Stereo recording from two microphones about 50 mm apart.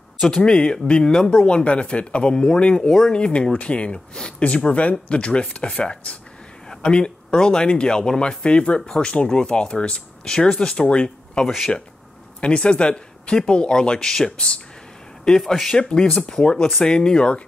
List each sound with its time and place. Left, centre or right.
0.5 s speech: centre